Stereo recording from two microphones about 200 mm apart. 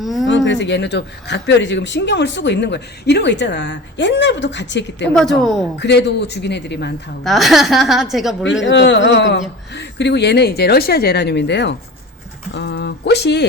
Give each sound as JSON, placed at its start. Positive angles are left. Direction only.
{"t": 0.0, "sound": "a woman's voice", "side_deg": 0}
{"t": 0.3, "sound": "speech", "side_deg": 65}
{"t": 5.1, "sound": "a woman's voice", "side_deg": 0}
{"t": 5.8, "sound": "speech", "side_deg": 60}
{"t": 7.3, "sound": "a woman's voice", "side_deg": 0}
{"t": 8.6, "sound": "speech", "side_deg": 65}